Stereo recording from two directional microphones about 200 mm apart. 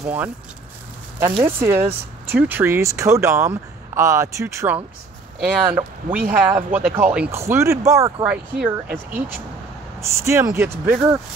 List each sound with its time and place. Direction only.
0.0 s speech: 10° right (ahead or behind)
1.4 s speech: 10° right (ahead or behind)